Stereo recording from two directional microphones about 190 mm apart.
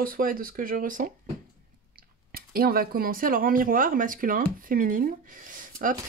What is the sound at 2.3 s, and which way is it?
Speech, 50° right (ahead or behind).